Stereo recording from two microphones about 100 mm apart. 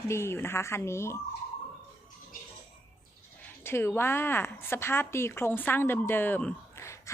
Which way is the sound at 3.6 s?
25° left (ahead or behind).